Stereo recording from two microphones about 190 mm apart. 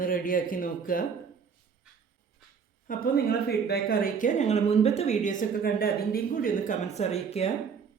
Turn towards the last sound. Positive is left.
turn(degrees=35)  # may be behind; listen again after turning